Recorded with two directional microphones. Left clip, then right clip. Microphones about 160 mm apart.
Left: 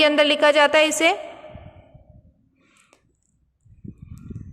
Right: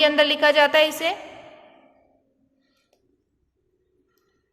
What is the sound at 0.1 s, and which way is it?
A woman's voice, 25° left (ahead or behind).